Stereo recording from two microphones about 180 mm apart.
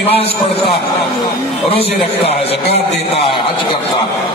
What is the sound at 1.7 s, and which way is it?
Speech, 30° left (ahead or behind).